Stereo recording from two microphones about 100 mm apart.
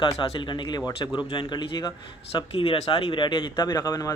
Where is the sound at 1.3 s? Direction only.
45° left (ahead or behind).